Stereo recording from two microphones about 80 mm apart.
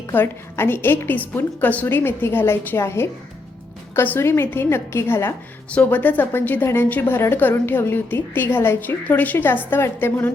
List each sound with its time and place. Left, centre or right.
0.1 s a woman's voice: left
5.7 s a woman's voice: left